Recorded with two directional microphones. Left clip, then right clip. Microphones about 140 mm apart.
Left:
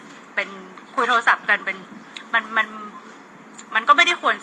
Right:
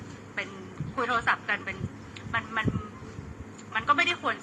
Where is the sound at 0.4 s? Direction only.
30° left (ahead or behind).